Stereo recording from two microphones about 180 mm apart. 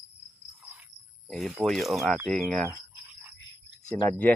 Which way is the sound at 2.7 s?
10° right (ahead or behind).